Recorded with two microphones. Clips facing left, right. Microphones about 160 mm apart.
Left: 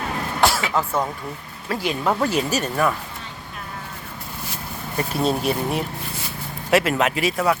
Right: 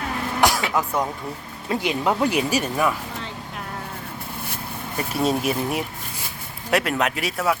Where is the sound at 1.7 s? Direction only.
20° right (ahead or behind).